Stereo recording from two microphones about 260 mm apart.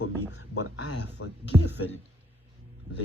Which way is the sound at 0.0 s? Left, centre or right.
Left.